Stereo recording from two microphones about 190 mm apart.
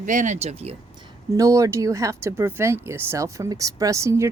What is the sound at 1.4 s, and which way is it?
Speech, 15° right (ahead or behind).